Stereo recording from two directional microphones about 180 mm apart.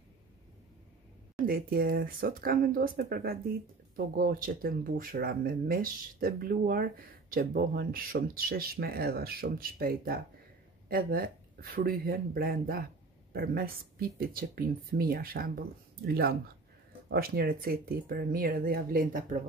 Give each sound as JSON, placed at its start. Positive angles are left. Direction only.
{"t": 1.4, "sound": "speech", "side_deg": -55}